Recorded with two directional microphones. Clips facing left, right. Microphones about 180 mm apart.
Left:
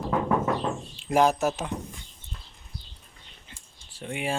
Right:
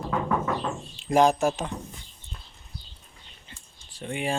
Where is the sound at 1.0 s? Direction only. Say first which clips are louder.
Right 2 dB; 5° left (ahead or behind).